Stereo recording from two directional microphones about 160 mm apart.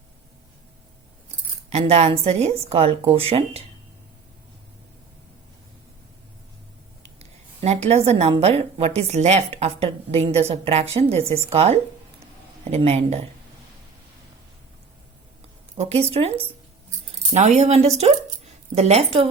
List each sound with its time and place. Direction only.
1.7 s a woman's voice: 40° right (ahead or behind)
7.2 s a sound: 40° right (ahead or behind)
8.4 s a woman's voice: 40° right (ahead or behind)
15.8 s a woman's voice: 40° right (ahead or behind)
17.3 s a woman's voice: 45° right (ahead or behind)